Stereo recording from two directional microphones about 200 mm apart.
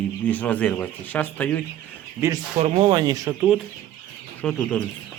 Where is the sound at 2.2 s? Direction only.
10° right (ahead or behind).